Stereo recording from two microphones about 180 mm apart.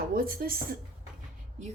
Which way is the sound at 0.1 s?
55° right (ahead or behind).